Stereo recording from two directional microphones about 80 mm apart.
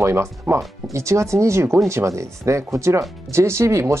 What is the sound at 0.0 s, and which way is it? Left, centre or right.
Speech, right.